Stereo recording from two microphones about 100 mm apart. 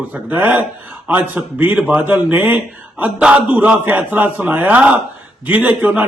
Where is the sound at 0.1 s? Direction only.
15° right (ahead or behind).